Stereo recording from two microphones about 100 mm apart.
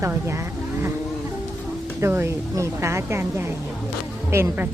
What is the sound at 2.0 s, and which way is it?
Speech, 25° right (ahead or behind).